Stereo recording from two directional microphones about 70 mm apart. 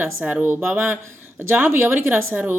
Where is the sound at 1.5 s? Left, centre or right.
Right.